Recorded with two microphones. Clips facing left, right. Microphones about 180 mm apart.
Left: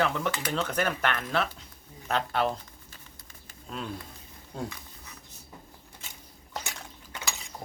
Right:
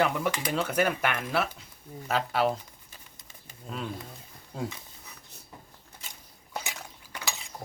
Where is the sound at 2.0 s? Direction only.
5° right (ahead or behind).